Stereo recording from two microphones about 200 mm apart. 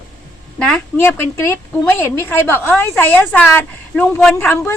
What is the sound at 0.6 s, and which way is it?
A woman's voice, 5° left (ahead or behind).